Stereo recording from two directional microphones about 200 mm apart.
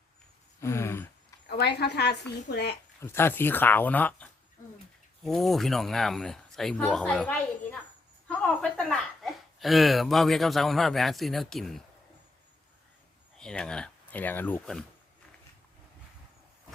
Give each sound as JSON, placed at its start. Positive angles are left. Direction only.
{"t": 0.6, "sound": "a sound", "side_deg": 15}
{"t": 1.5, "sound": "a woman's voice", "side_deg": 55}
{"t": 3.0, "sound": "speech", "side_deg": 10}
{"t": 13.4, "sound": "speech", "side_deg": 5}